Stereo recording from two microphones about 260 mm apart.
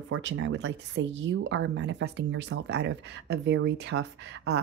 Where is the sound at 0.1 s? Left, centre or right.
Right.